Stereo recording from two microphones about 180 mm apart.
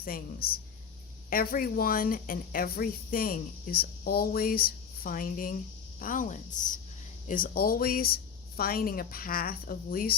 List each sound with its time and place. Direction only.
0.4 s speech: 55° left (ahead or behind)